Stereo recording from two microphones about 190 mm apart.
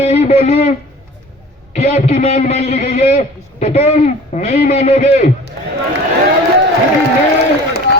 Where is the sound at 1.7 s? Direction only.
35° left (ahead or behind).